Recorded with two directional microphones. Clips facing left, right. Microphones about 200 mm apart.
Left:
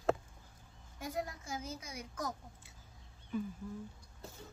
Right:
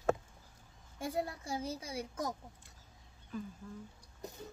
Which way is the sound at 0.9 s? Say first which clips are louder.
Right 3 dB; 30° right (ahead or behind).